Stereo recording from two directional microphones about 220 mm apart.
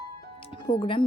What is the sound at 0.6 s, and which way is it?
Speech, 20° left (ahead or behind).